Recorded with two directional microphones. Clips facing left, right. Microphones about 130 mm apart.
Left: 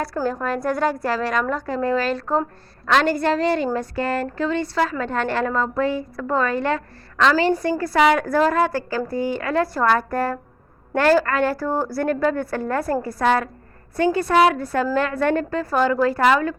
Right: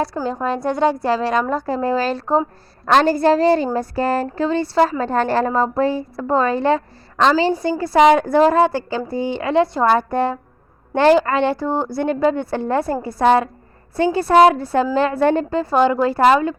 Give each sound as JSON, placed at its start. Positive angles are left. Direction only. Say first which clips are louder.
{"t": 0.0, "sound": "a woman's voice", "louder": "right 2 dB", "side_deg": -25}